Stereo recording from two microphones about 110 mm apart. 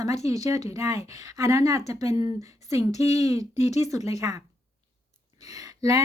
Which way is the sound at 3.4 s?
90° left.